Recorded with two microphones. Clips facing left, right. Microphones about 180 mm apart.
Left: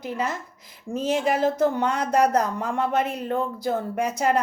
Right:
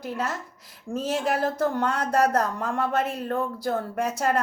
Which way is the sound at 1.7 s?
Centre (ahead or behind).